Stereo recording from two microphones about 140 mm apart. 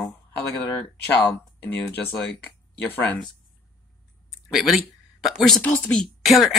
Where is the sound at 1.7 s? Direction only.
15° left (ahead or behind).